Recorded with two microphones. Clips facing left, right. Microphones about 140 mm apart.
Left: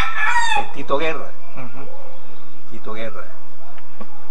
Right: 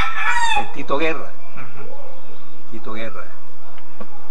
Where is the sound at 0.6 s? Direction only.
5° left (ahead or behind).